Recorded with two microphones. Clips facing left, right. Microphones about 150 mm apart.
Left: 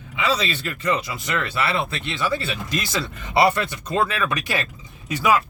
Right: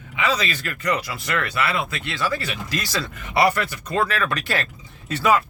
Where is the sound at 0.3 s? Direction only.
30° left (ahead or behind).